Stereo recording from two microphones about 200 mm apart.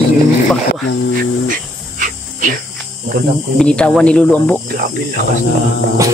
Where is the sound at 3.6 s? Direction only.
5° left (ahead or behind).